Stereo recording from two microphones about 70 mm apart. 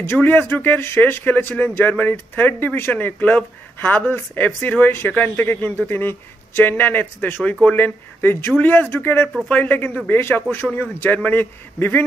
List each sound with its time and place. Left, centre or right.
0.0 s speech: left